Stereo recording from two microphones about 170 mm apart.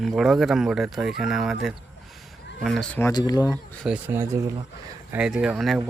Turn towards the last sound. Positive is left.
turn(degrees=0)  # may be behind; listen again after turning